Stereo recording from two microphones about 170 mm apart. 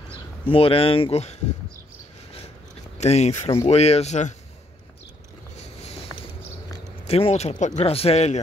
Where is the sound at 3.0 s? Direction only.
40° left (ahead or behind).